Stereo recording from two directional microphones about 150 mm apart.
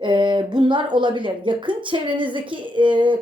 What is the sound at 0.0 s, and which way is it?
Speech, 30° right (ahead or behind).